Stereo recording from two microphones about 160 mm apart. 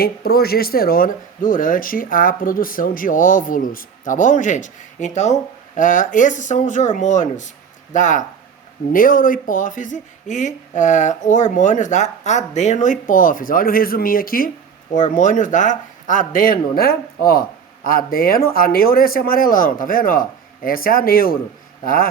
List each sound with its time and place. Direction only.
0.0 s speech: 75° left (ahead or behind)